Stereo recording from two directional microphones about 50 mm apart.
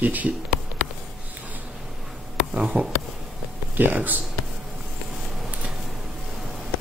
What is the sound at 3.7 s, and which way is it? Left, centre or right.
Speech, right.